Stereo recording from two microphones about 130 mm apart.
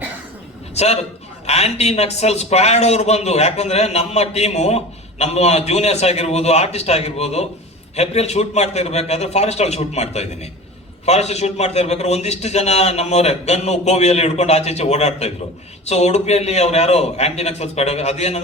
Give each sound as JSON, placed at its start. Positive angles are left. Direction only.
{"t": 0.8, "sound": "a man's voice", "side_deg": 55}